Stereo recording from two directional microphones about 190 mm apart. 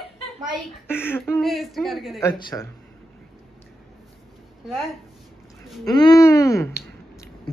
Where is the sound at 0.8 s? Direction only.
10° left (ahead or behind).